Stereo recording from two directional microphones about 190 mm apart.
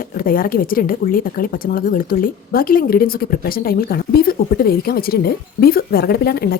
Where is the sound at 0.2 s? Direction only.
50° left (ahead or behind).